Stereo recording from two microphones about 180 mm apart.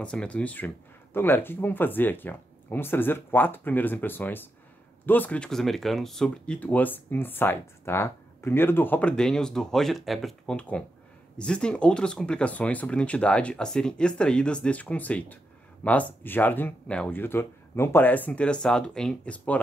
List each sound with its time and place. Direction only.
0.0 s speech: 5° left (ahead or behind)